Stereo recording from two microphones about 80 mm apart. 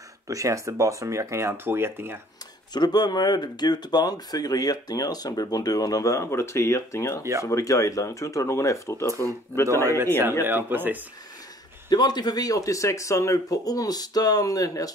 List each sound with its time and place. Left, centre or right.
0.3 s speech: right
2.7 s speech: left
10.4 s speech: right
11.9 s speech: left